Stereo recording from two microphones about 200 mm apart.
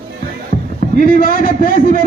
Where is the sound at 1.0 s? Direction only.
45° left (ahead or behind).